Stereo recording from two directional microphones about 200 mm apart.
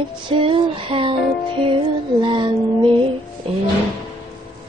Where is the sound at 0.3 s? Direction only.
25° right (ahead or behind).